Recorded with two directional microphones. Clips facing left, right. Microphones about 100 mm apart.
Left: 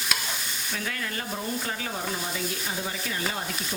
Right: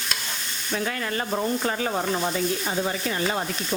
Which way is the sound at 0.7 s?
40° right (ahead or behind).